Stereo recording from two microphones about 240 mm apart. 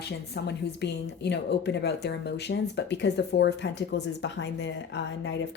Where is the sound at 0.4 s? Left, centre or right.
Left.